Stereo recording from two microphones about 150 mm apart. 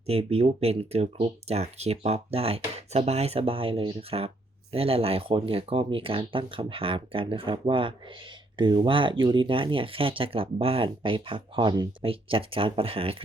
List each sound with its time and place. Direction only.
0.1 s speech: 40° right (ahead or behind)